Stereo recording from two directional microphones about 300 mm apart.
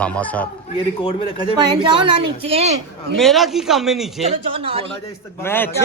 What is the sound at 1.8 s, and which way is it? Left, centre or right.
Speech, centre.